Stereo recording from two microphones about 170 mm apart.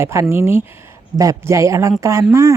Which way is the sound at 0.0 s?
15° right (ahead or behind).